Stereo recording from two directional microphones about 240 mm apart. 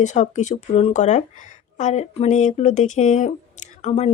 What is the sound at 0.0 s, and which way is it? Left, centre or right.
Speech, left.